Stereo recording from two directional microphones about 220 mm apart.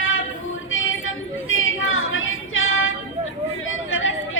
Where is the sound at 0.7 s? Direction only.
65° left (ahead or behind).